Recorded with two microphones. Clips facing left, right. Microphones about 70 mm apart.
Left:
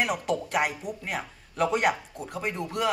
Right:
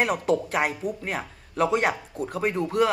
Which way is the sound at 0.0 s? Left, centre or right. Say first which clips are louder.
Right 4 dB; right.